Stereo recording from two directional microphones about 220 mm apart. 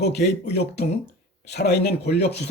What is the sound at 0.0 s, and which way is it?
Speech, 50° left (ahead or behind).